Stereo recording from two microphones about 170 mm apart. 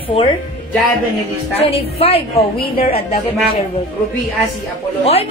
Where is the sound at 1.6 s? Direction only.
35° left (ahead or behind).